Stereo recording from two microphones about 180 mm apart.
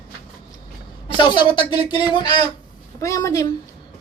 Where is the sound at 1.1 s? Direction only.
25° left (ahead or behind).